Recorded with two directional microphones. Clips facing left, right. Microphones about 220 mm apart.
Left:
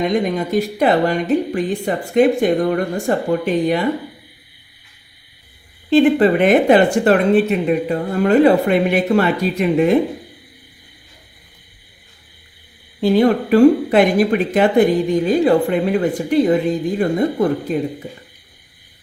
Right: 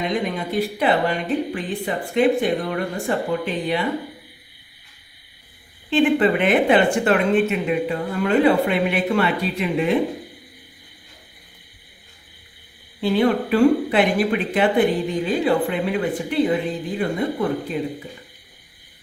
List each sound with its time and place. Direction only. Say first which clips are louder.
0.1 s speech: left 6 dB; 45° left (ahead or behind)
5.9 s speech: left 5 dB; 40° left (ahead or behind)
13.0 s speech: left 5 dB; 40° left (ahead or behind)